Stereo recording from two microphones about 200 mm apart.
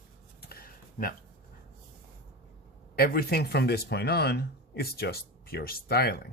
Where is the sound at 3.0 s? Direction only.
50° left (ahead or behind).